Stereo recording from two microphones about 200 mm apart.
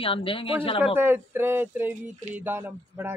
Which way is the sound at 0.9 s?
10° right (ahead or behind).